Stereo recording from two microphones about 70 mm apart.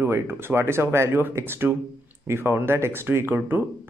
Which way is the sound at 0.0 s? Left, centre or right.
Right.